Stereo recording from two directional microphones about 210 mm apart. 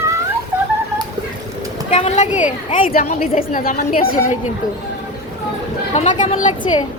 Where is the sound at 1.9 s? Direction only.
30° left (ahead or behind).